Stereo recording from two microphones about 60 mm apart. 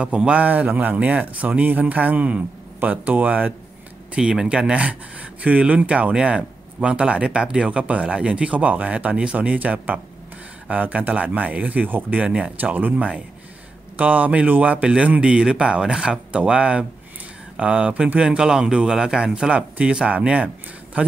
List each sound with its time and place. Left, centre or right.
0.0 s speech: centre
4.1 s speech: centre